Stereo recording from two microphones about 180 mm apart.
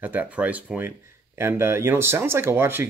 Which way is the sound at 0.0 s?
10° right (ahead or behind).